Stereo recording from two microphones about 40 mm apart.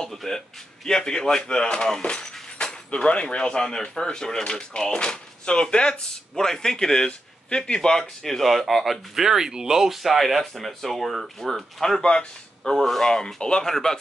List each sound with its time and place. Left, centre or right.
0.1 s a sound: centre
0.8 s speech: centre
7.9 s speech: centre
10.0 s speech: centre
12.0 s speech: left